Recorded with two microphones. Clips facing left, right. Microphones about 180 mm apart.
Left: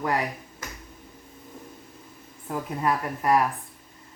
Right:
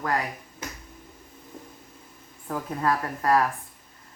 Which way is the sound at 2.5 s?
15° left (ahead or behind).